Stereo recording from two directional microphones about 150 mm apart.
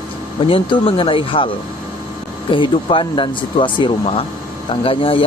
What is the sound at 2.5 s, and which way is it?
Speech, 35° left (ahead or behind).